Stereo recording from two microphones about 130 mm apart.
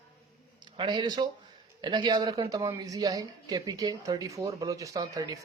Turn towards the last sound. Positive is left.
turn(degrees=-25)  # may be behind; listen again after turning